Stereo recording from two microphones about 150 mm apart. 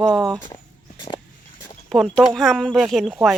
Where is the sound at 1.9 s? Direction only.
Centre (ahead or behind).